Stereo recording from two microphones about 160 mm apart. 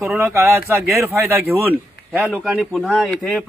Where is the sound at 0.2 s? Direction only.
15° right (ahead or behind).